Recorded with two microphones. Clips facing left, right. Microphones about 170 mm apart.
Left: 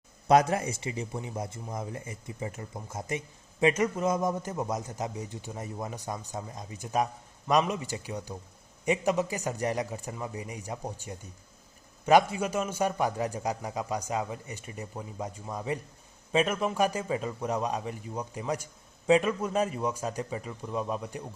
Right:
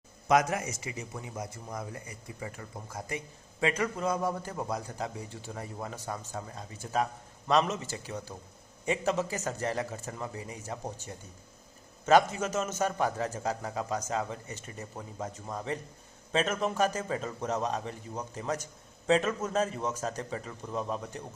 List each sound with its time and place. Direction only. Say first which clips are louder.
0.3 s a man's voice: left 3 dB; 30° left (ahead or behind); by 21.2 s 10° left (ahead or behind)